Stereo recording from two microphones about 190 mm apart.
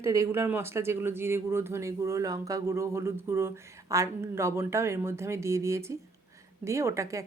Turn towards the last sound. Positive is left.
turn(degrees=-15)  # may be behind; listen again after turning